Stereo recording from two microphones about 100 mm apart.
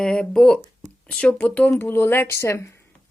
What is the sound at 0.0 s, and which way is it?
Speech, 10° left (ahead or behind).